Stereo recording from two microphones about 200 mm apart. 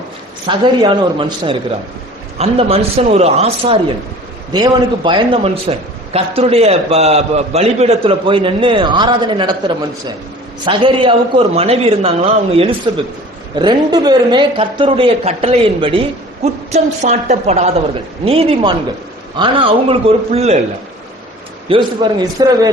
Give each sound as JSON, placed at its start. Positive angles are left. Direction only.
{"t": 0.4, "sound": "a man's voice", "side_deg": -25}
{"t": 21.7, "sound": "a man's voice", "side_deg": -25}